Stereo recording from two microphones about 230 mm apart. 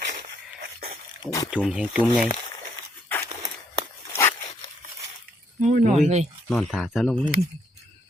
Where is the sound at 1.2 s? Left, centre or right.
Centre.